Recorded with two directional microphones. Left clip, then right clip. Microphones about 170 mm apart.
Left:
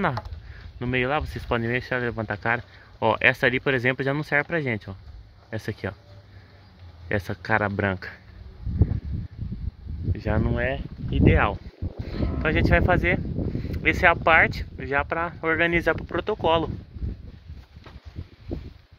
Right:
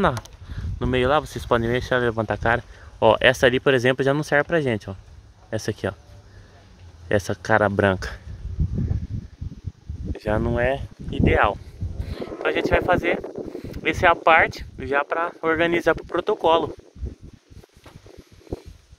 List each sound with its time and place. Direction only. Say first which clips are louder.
0.0 s speech: right 4 dB; 5° right (ahead or behind)
7.1 s speech: right 5 dB; 10° right (ahead or behind)
10.1 s speech: right 4 dB; 20° right (ahead or behind); by 11.3 s 40° right (ahead or behind)
12.1 s speech: right 2 dB; 10° right (ahead or behind)